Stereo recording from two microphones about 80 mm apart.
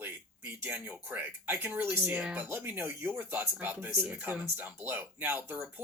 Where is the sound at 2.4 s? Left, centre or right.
Right.